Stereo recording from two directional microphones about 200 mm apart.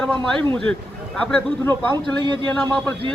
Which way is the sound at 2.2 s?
20° right (ahead or behind).